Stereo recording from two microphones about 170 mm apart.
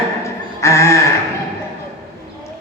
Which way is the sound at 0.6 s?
15° left (ahead or behind).